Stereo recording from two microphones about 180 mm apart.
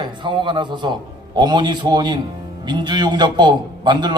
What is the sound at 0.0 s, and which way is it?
A man's voice, 25° right (ahead or behind).